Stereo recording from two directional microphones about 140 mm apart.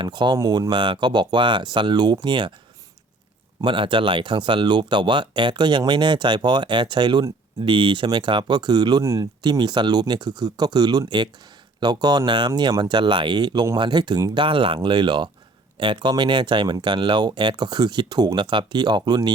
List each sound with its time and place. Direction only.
0.0 s speech: 30° right (ahead or behind)
3.6 s speech: 35° right (ahead or behind)